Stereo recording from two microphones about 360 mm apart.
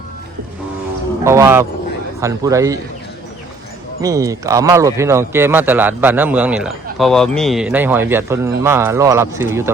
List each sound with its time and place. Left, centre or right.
1.2 s speech: centre
4.0 s speech: centre